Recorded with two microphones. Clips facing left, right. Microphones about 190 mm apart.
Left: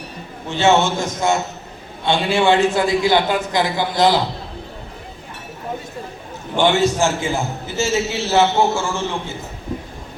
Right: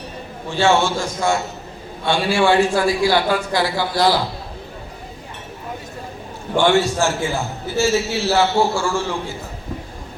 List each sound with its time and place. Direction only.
0.5 s a man's voice: 20° left (ahead or behind)
6.6 s a man's voice: 20° left (ahead or behind)